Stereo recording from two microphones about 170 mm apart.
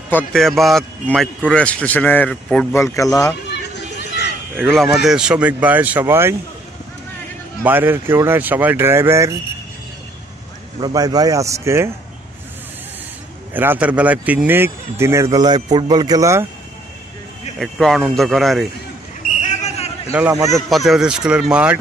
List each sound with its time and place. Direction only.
0.1 s a man's voice: 5° left (ahead or behind)
2.7 s speech: 15° left (ahead or behind)
3.4 s a sound: 90° left
4.9 s speech: 5° right (ahead or behind)
7.6 s speech: 10° right (ahead or behind)
10.8 s a man's voice: 25° right (ahead or behind)
13.5 s speech: 10° right (ahead or behind)
17.6 s a man's voice: centre (ahead or behind)
19.2 s a sound: 45° left (ahead or behind)
20.1 s speech: 10° right (ahead or behind)
20.5 s a man's voice: centre (ahead or behind)